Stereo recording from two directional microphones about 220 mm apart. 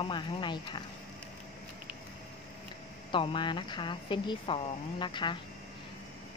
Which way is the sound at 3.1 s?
20° left (ahead or behind).